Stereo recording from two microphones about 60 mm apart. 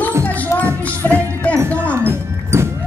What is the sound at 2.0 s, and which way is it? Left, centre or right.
Music, right.